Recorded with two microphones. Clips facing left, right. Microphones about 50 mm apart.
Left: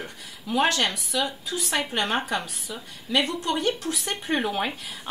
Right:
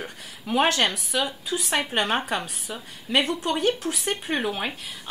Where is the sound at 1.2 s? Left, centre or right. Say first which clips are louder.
Right 1 dB; centre.